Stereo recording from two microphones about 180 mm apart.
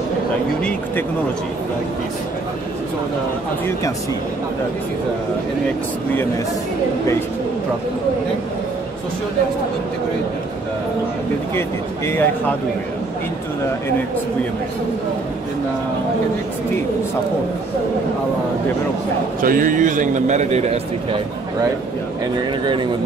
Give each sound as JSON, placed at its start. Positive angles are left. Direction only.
{"t": 12.1, "sound": "speech", "side_deg": 10}
{"t": 19.4, "sound": "a man's voice", "side_deg": -50}